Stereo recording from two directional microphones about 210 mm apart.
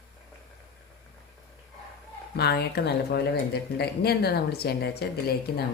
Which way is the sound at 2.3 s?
50° left (ahead or behind).